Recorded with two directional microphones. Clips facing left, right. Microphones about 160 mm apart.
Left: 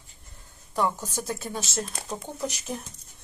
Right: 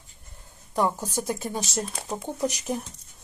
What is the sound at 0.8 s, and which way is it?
Speech, 10° right (ahead or behind).